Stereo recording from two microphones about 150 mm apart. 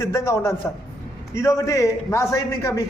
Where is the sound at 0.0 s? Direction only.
20° left (ahead or behind).